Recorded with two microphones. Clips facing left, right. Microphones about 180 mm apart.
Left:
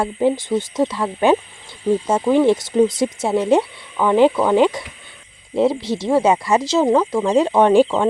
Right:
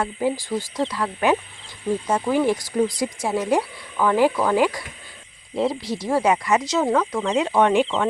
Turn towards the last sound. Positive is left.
turn(degrees=30)  # may be behind; listen again after turning